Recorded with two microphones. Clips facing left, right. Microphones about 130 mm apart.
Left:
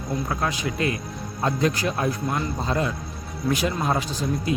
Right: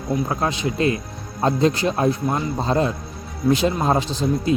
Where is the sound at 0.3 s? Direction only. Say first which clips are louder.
Right 3 dB; 25° right (ahead or behind).